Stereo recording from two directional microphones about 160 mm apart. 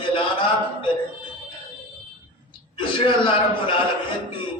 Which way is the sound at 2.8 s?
30° left (ahead or behind).